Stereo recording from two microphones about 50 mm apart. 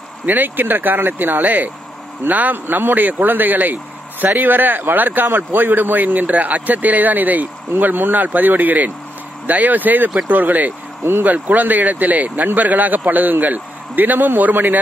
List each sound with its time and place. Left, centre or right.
0.3 s a man's voice: right
11.1 s speech: right
11.4 s a man's voice: right